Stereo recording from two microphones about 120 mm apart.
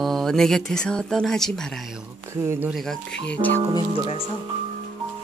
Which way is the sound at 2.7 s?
5° left (ahead or behind).